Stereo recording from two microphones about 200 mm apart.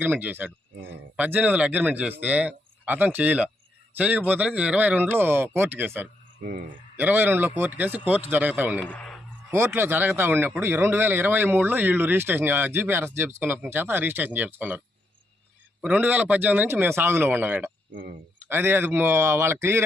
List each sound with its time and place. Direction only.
0.0 s speech: 10° right (ahead or behind)
6.4 s speech: 45° right (ahead or behind)
6.9 s speech: 10° right (ahead or behind)
8.8 s a sound: 5° left (ahead or behind)
9.5 s speech: 10° right (ahead or behind)
15.8 s speech: 10° right (ahead or behind)